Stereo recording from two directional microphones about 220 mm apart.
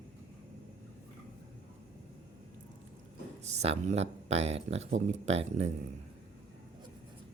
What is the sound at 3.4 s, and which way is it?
Speech, 30° right (ahead or behind).